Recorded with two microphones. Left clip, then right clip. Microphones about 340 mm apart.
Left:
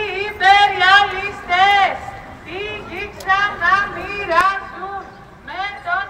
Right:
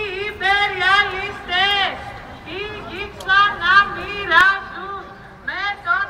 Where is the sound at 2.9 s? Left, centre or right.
Centre.